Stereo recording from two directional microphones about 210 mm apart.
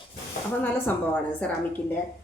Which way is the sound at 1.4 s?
5° left (ahead or behind).